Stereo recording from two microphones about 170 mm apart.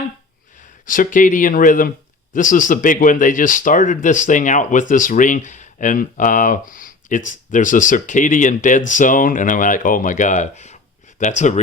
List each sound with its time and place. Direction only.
0.9 s speech: 50° left (ahead or behind)